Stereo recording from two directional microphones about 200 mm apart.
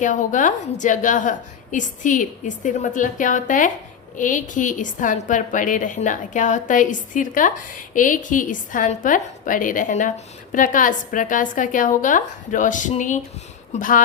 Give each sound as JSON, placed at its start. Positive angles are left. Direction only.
{"t": 0.0, "sound": "a woman's voice", "side_deg": 40}